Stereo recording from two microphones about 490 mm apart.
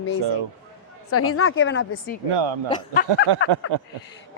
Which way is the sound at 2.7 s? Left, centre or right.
Centre.